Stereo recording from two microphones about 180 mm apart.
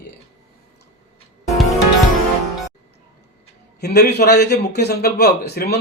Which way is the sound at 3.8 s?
65° left (ahead or behind).